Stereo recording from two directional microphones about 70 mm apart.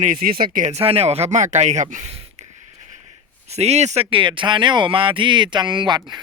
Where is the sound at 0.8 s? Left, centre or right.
Right.